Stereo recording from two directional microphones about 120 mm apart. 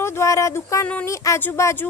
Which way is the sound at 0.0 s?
20° left (ahead or behind).